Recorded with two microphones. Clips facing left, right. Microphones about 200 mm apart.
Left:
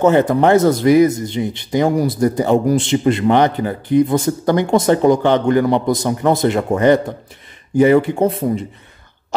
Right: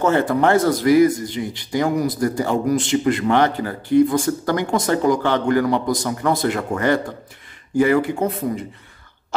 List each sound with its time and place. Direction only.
0.0 s speech: 20° left (ahead or behind)